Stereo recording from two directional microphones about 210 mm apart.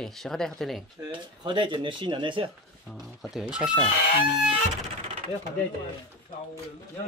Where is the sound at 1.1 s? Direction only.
20° right (ahead or behind).